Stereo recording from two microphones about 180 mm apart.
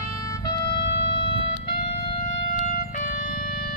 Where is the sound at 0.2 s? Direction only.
20° left (ahead or behind).